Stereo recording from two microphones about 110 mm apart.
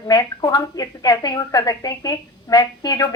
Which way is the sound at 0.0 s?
35° left (ahead or behind).